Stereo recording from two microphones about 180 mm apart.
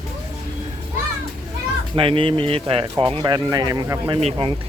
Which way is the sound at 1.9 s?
30° right (ahead or behind).